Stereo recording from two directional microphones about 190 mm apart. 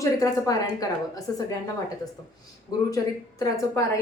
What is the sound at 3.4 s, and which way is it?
Speech, 15° left (ahead or behind).